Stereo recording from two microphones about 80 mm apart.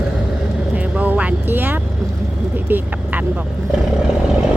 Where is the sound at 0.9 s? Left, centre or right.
Centre.